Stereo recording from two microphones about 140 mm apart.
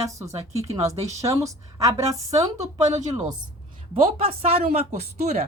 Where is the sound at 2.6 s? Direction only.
55° right (ahead or behind).